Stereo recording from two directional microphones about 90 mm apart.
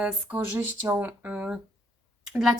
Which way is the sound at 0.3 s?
20° right (ahead or behind).